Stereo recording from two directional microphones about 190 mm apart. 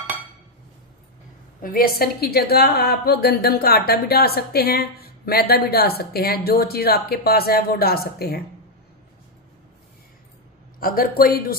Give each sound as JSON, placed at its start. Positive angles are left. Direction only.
{"t": 1.6, "sound": "a woman's voice", "side_deg": 50}
{"t": 10.8, "sound": "speech", "side_deg": 50}